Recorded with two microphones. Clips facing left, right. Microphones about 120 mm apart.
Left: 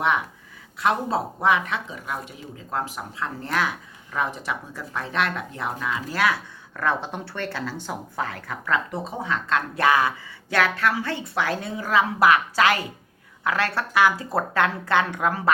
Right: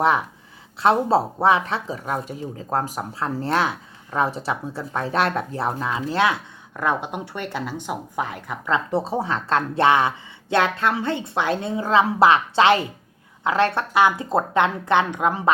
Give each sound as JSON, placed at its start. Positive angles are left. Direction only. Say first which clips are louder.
{"t": 0.8, "sound": "speech", "louder": "right 5 dB", "side_deg": -30}